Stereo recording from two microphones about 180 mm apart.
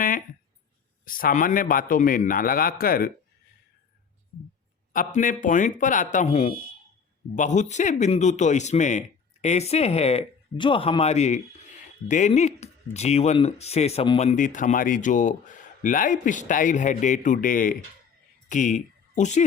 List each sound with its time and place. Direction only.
1.0 s a man's voice: 50° left (ahead or behind)
4.9 s a man's voice: 45° left (ahead or behind)